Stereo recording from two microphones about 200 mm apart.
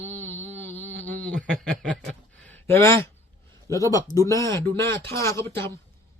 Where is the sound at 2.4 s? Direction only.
10° left (ahead or behind).